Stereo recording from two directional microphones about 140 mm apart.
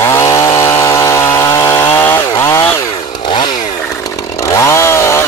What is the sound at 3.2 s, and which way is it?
Chainsaw, 35° left (ahead or behind).